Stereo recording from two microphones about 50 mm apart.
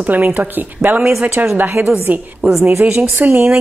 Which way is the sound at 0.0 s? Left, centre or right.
Right.